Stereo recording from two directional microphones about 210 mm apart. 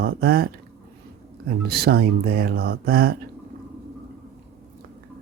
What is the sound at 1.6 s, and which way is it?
Speech, 50° right (ahead or behind).